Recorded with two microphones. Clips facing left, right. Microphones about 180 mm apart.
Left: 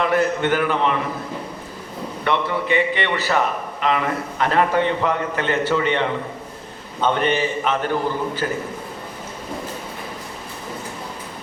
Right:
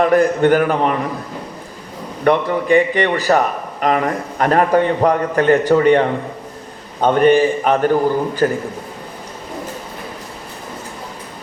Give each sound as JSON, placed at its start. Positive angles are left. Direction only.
{"t": 0.0, "sound": "a man's voice", "side_deg": -45}
{"t": 2.2, "sound": "a man's voice", "side_deg": -45}